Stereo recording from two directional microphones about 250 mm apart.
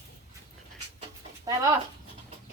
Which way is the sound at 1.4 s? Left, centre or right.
Centre.